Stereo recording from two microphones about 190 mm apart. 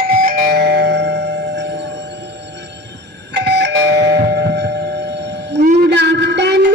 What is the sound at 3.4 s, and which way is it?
Doorbell, 65° right (ahead or behind).